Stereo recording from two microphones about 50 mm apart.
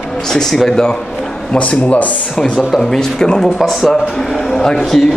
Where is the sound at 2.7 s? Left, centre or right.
Centre.